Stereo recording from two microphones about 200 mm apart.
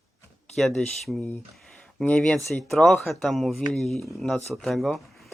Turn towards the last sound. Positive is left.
turn(degrees=0)  # may be behind; listen again after turning